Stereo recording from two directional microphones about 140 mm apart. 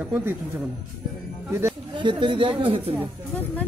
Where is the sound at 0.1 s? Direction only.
15° right (ahead or behind).